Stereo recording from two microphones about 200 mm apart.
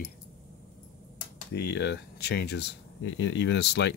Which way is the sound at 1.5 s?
55° left (ahead or behind).